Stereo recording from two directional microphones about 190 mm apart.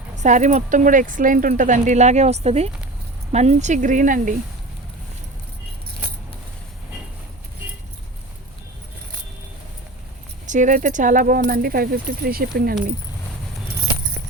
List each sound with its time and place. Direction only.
0.2 s speech: 40° right (ahead or behind)
10.4 s speech: 40° right (ahead or behind)